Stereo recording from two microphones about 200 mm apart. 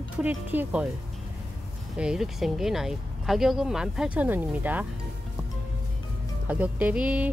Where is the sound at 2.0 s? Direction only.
5° right (ahead or behind).